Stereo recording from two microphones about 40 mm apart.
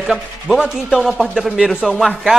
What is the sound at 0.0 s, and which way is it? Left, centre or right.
Speech, centre.